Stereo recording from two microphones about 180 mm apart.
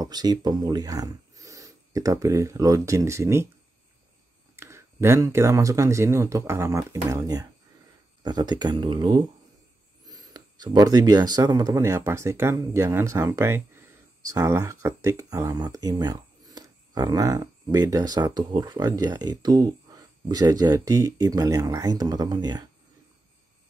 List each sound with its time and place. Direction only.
0.0 s speech: 20° right (ahead or behind)
4.6 s speech: 15° right (ahead or behind)